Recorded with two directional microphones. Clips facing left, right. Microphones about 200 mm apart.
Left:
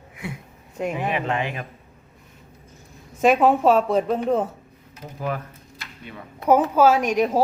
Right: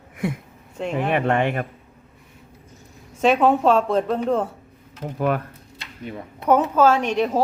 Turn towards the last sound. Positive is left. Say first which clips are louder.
# left 1 dB
turn(degrees=10)  # may be behind; listen again after turning